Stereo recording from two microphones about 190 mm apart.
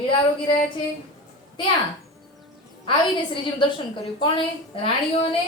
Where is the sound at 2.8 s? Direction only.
25° left (ahead or behind).